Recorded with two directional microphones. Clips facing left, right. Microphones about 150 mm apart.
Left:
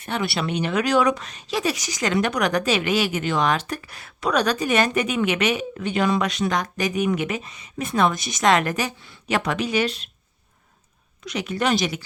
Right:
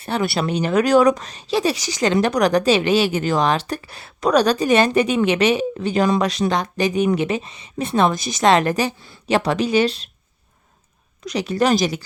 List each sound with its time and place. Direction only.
0.0 s speech: 35° right (ahead or behind)
11.3 s speech: 35° right (ahead or behind)